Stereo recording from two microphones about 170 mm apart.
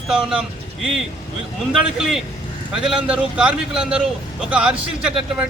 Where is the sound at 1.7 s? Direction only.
5° right (ahead or behind).